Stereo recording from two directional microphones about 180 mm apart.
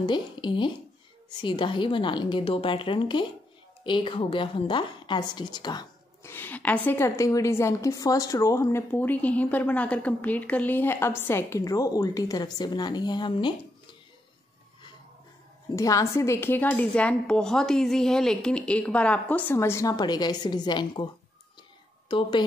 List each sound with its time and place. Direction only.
0.0 s a woman's voice: 25° left (ahead or behind)
15.7 s a woman's voice: 20° left (ahead or behind)